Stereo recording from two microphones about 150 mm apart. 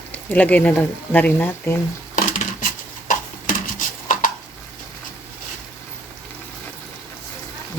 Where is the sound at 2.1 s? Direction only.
65° left (ahead or behind).